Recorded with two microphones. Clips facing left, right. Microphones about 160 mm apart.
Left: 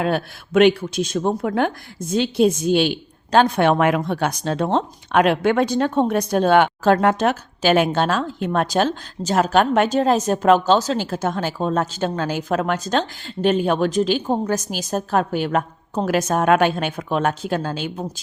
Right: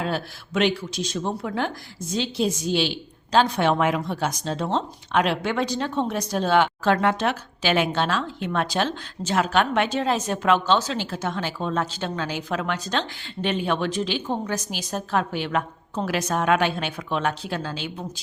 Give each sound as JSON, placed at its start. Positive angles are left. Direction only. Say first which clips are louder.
{"t": 0.0, "sound": "a woman's voice", "louder": "left 6 dB", "side_deg": 55}